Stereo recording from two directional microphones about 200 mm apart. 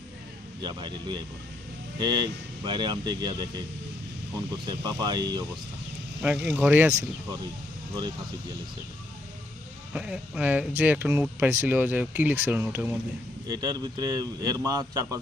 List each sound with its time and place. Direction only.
0.6 s a man's voice: 20° right (ahead or behind)
4.6 s a man's voice: 20° right (ahead or behind)
6.2 s speech: 10° right (ahead or behind)
9.9 s speech: 5° right (ahead or behind)
13.5 s a man's voice: 20° right (ahead or behind)